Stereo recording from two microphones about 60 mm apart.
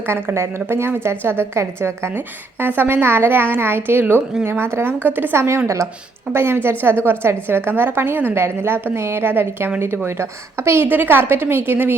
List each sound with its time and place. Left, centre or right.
0.1 s a woman's voice: right
5.6 s speech: right
6.3 s a woman's voice: right
10.8 s a woman's voice: right